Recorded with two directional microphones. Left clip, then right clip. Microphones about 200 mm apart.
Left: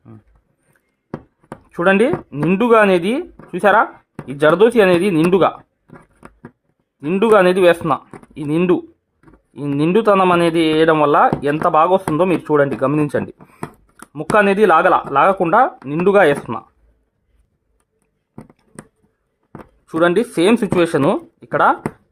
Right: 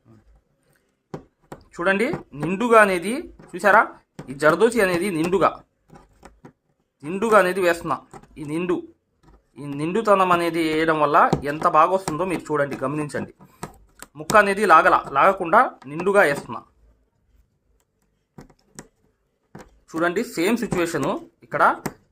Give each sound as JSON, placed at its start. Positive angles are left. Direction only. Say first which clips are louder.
{"t": 1.7, "sound": "speech", "louder": "left 7 dB", "side_deg": 50}
{"t": 5.9, "sound": "scissors", "louder": "left 6 dB", "side_deg": 20}
{"t": 7.0, "sound": "speech", "louder": "left 5 dB", "side_deg": 45}
{"t": 19.9, "sound": "speech", "louder": "left 8 dB", "side_deg": 50}